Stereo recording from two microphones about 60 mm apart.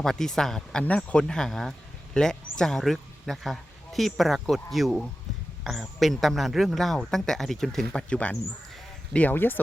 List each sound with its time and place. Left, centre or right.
0.0 s a man's voice: centre
9.3 s speech: left